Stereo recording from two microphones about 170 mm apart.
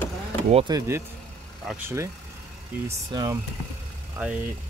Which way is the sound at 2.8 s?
20° right (ahead or behind).